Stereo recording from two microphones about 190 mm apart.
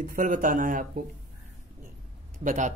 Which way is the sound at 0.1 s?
45° right (ahead or behind).